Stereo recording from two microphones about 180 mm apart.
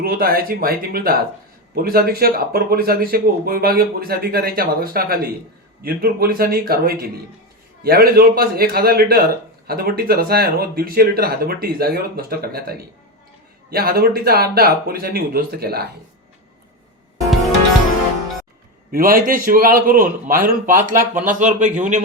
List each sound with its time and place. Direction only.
0.0 s a man's voice: 55° right (ahead or behind)
18.9 s a man's voice: 50° right (ahead or behind)